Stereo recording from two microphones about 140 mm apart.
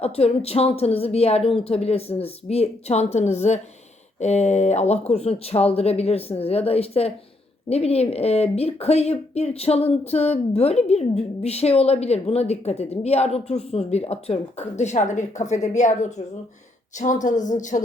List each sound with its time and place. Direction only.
0.0 s a woman's voice: 45° left (ahead or behind); by 17.8 s 65° left (ahead or behind)